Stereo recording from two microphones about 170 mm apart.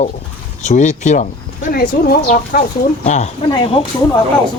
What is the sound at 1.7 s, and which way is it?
Speech, 65° left (ahead or behind).